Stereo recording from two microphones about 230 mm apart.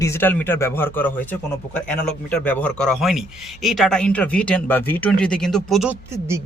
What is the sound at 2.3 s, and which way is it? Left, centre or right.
A man's voice, centre.